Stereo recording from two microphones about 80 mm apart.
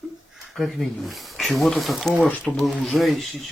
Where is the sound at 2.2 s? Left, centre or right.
Centre.